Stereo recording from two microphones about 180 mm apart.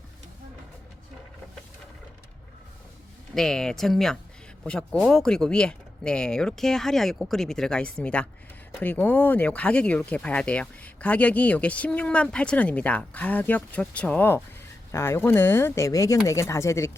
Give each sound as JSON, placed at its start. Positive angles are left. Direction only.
{"t": 3.3, "sound": "speech", "side_deg": 5}